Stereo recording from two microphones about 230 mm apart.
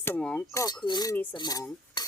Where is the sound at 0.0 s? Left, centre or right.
Centre.